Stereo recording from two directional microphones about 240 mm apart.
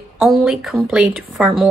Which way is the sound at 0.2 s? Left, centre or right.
Centre.